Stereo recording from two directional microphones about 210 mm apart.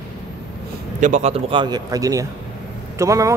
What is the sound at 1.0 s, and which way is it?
Speech, 35° right (ahead or behind).